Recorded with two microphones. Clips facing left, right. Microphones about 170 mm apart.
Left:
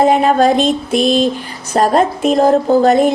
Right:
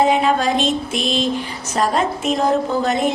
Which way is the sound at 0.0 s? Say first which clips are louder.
Left 5 dB; 40° left (ahead or behind).